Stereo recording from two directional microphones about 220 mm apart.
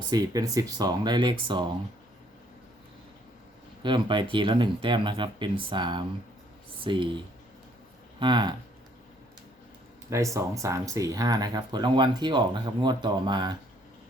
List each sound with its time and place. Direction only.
0.1 s speech: 15° right (ahead or behind)
3.8 s speech: 20° right (ahead or behind)
8.2 s speech: 20° right (ahead or behind)
10.1 s speech: 15° right (ahead or behind)